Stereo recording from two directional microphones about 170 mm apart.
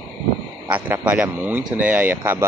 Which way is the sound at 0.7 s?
10° right (ahead or behind).